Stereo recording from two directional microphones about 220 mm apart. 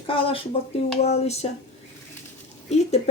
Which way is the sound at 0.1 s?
25° left (ahead or behind).